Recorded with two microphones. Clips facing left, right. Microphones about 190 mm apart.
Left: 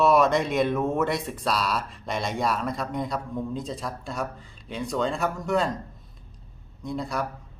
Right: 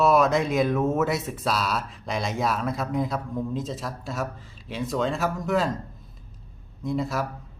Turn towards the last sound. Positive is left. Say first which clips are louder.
# right 3 dB
turn(degrees=0)  # may be behind; listen again after turning